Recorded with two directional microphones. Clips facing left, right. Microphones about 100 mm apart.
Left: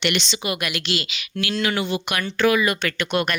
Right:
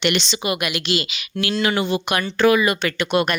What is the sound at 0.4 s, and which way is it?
A woman's voice, 15° right (ahead or behind).